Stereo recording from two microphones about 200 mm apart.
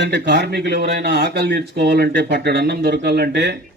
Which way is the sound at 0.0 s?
60° right (ahead or behind).